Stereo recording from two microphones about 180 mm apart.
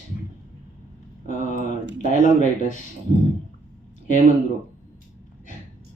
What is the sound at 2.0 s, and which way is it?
Speech, 45° left (ahead or behind).